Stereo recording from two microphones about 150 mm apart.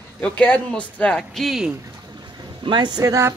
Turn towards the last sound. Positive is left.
turn(degrees=-20)  # may be behind; listen again after turning